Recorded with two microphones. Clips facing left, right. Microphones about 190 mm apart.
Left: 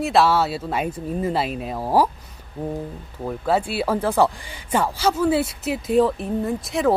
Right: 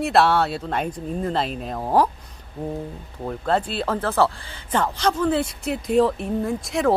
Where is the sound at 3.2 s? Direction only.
5° left (ahead or behind).